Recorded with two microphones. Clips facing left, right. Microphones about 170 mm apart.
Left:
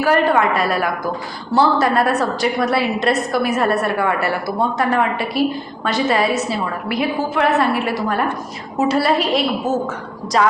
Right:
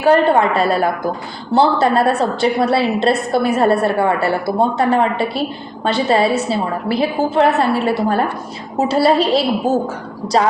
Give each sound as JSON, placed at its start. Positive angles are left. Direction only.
{"t": 0.0, "sound": "a woman's voice", "side_deg": -25}